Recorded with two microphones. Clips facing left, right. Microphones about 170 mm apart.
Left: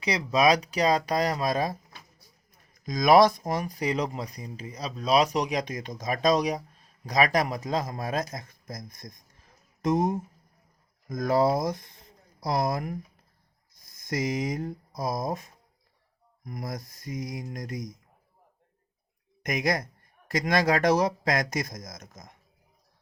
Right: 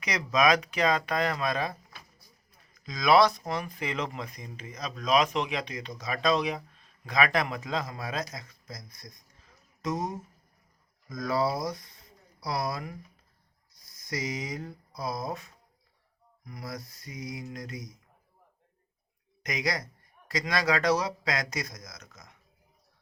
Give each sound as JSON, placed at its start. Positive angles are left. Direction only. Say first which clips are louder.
{"t": 0.0, "sound": "speech", "louder": "left 2 dB", "side_deg": 30}
{"t": 11.3, "sound": "speech", "louder": "left 5 dB", "side_deg": 50}
{"t": 14.2, "sound": "speech", "louder": "left 6 dB", "side_deg": 50}
{"t": 19.4, "sound": "a man's voice", "louder": "left 5 dB", "side_deg": 50}